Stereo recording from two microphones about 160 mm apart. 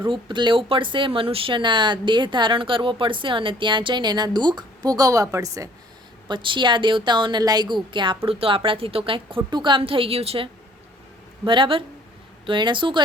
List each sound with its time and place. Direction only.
0.0 s a woman's voice: 30° right (ahead or behind)